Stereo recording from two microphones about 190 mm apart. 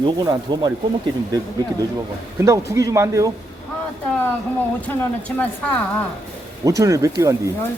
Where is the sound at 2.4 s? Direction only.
15° right (ahead or behind).